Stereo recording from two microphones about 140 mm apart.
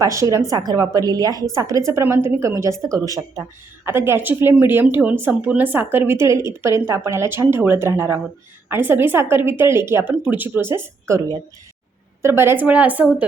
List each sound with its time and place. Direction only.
0.0 s a woman's voice: 20° right (ahead or behind)